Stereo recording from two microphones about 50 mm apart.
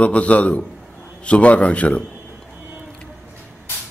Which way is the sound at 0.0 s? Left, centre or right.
Left.